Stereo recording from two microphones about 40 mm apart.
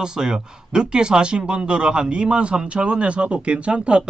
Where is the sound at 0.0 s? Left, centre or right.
Centre.